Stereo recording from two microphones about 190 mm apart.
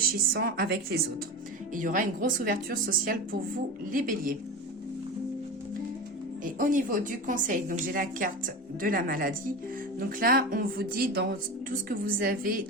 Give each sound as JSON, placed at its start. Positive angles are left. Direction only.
{"t": 0.3, "sound": "a woman's voice", "side_deg": -50}
{"t": 1.7, "sound": "a woman's voice", "side_deg": -45}
{"t": 6.4, "sound": "a woman's voice", "side_deg": -45}